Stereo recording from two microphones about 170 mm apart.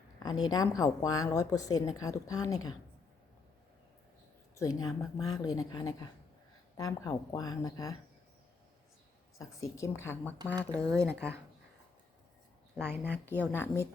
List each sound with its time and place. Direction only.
0.2 s a woman's voice: 25° left (ahead or behind)
4.5 s a woman's voice: 20° left (ahead or behind)
9.4 s speech: 20° left (ahead or behind)
12.7 s speech: 10° right (ahead or behind)
13.3 s speech: 10° left (ahead or behind)